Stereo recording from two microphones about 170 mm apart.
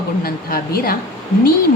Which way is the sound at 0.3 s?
60° left (ahead or behind).